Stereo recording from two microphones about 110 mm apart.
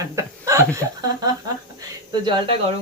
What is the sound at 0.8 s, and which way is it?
Speech, 35° right (ahead or behind).